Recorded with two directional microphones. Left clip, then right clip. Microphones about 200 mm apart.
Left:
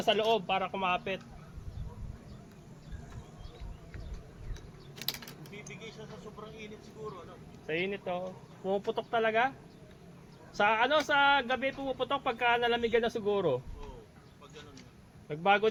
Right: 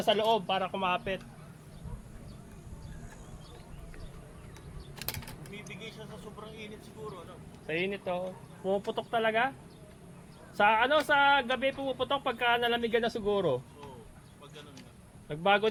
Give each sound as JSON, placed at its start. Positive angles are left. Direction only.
{"t": 0.0, "sound": "speech", "side_deg": 0}
{"t": 5.0, "sound": "typing", "side_deg": 5}
{"t": 5.6, "sound": "vehicle", "side_deg": -60}
{"t": 7.7, "sound": "speech", "side_deg": 5}
{"t": 10.6, "sound": "speech", "side_deg": 10}
{"t": 15.3, "sound": "speech", "side_deg": 10}